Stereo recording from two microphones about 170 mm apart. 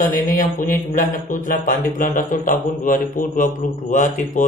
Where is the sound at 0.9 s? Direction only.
50° left (ahead or behind).